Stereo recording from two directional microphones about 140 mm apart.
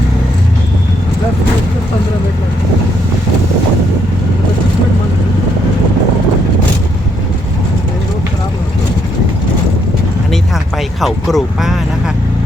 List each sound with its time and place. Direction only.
11.0 s speech: centre (ahead or behind)